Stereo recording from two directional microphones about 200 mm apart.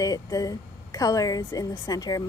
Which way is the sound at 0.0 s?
15° left (ahead or behind).